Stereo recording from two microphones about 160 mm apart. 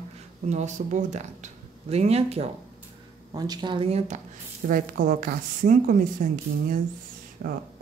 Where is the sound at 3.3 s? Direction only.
25° right (ahead or behind).